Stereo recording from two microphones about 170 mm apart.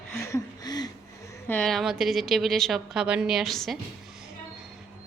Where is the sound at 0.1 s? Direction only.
15° left (ahead or behind).